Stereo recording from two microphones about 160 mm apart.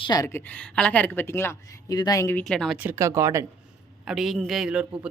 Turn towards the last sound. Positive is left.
turn(degrees=-5)  # may be behind; listen again after turning